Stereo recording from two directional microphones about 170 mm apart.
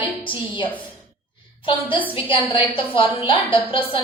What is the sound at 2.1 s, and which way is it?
A woman's voice, 30° left (ahead or behind).